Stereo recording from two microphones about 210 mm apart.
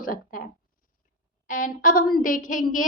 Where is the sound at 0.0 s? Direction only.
40° left (ahead or behind).